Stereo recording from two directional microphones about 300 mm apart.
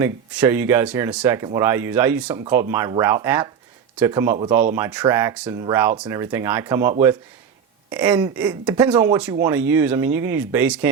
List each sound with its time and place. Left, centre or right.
0.0 s speech: centre